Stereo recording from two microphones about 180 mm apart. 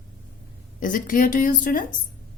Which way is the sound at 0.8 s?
50° left (ahead or behind).